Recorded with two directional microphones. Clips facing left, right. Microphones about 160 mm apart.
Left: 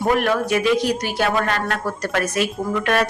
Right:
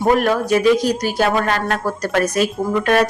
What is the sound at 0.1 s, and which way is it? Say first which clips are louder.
A woman's voice: right 4 dB; 40° right (ahead or behind).